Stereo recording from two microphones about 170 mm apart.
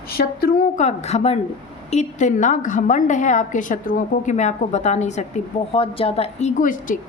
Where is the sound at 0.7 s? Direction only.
40° left (ahead or behind).